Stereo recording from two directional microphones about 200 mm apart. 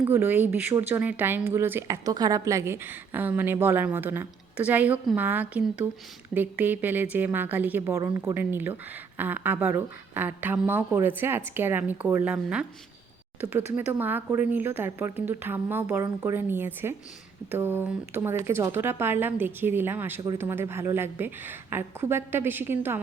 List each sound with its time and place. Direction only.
0.0 s a woman's voice: 10° right (ahead or behind)